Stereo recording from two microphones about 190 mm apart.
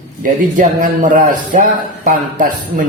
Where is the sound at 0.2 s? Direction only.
50° right (ahead or behind).